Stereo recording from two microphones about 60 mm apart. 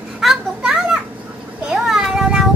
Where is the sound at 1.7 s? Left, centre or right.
Centre.